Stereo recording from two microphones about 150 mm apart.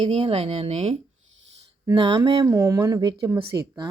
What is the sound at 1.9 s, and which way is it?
A woman's voice, 30° right (ahead or behind).